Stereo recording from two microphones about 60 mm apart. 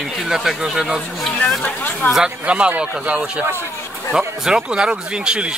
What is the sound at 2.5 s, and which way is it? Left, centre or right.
Speech, right.